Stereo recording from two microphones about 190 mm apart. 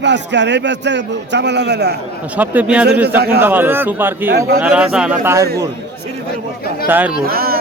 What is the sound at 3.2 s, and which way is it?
Speech, 55° right (ahead or behind).